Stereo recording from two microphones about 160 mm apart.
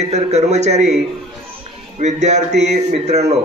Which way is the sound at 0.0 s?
45° right (ahead or behind).